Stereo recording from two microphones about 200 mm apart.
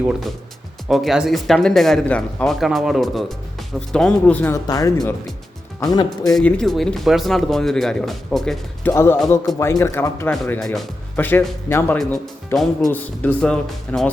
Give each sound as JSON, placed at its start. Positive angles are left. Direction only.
{"t": 0.1, "sound": "speech", "side_deg": 0}
{"t": 6.3, "sound": "speech", "side_deg": 0}
{"t": 8.9, "sound": "speech", "side_deg": 15}